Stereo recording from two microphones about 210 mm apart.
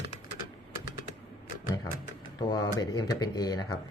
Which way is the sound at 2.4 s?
15° left (ahead or behind).